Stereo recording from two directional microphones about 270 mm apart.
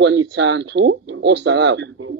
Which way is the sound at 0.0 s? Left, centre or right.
Right.